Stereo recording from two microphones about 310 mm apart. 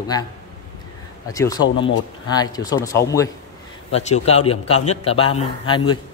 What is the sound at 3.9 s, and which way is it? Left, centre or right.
A man's voice, left.